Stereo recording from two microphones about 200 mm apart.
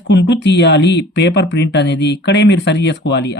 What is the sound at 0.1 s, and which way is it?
Speech, 60° left (ahead or behind).